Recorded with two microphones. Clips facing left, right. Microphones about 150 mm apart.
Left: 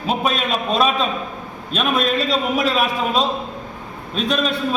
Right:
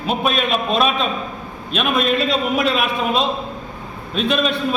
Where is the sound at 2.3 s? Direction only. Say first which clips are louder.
Right 1 dB; 35° left (ahead or behind).